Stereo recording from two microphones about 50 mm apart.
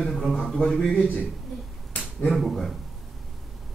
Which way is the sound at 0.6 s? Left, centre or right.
Centre.